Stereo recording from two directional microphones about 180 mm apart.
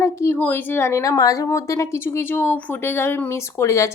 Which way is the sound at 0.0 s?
15° left (ahead or behind).